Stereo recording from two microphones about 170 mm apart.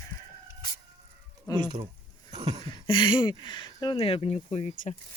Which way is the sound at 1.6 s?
25° right (ahead or behind).